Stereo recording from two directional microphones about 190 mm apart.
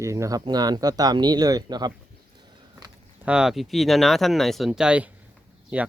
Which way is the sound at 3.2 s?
5° right (ahead or behind).